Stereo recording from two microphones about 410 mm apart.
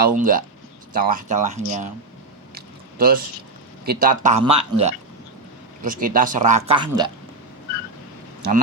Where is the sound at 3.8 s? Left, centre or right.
Right.